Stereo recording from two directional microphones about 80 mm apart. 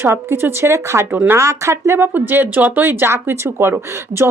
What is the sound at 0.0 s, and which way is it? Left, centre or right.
Speech, right.